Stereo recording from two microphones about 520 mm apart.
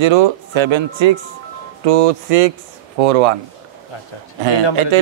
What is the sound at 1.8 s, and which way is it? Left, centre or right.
Speech, right.